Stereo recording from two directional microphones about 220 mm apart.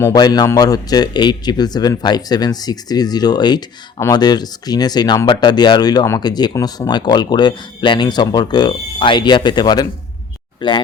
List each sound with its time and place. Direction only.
0.0 s a man's voice: 15° left (ahead or behind)